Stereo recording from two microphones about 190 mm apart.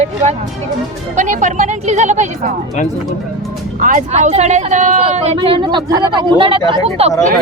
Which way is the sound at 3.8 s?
40° right (ahead or behind).